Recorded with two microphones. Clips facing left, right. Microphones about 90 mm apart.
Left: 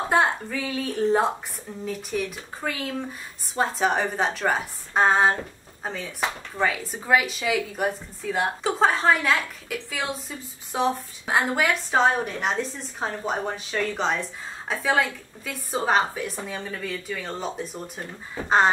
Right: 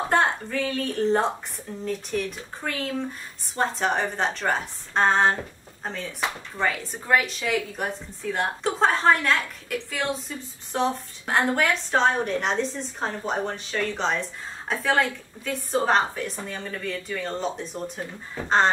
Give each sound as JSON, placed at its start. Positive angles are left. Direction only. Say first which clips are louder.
{"t": 0.1, "sound": "a woman's voice", "louder": "left 1 dB", "side_deg": 5}